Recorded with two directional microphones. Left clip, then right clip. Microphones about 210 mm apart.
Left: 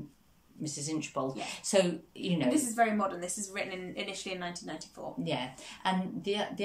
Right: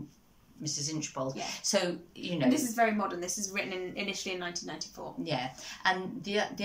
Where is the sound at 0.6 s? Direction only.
15° left (ahead or behind).